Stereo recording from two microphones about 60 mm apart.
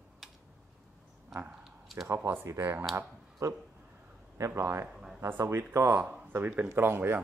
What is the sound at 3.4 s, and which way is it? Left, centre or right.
Speech, right.